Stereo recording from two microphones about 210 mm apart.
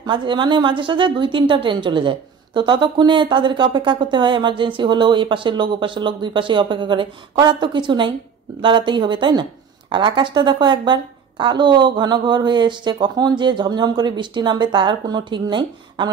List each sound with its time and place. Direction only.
0.0 s a woman's voice: 20° right (ahead or behind)